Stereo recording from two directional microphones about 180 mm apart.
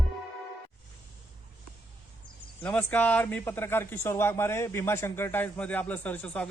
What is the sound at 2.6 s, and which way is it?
A man's voice, 10° left (ahead or behind).